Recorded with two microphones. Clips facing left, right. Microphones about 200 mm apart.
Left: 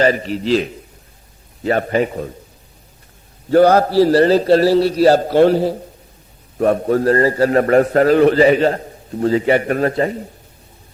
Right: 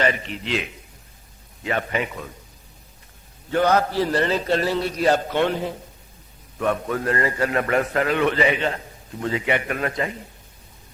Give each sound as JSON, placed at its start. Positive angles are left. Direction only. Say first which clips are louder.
{"t": 0.0, "sound": "a man's voice", "louder": "left 8 dB", "side_deg": 35}
{"t": 3.5, "sound": "a man's voice", "louder": "left 9 dB", "side_deg": 35}